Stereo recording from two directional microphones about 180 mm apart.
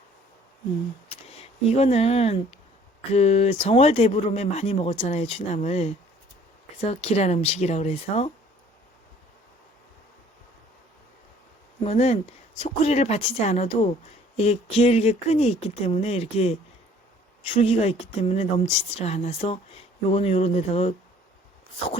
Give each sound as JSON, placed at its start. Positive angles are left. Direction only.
{"t": 1.1, "sound": "speech", "side_deg": 35}
{"t": 11.8, "sound": "speech", "side_deg": 35}